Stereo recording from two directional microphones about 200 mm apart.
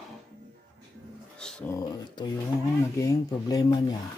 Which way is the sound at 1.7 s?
20° left (ahead or behind).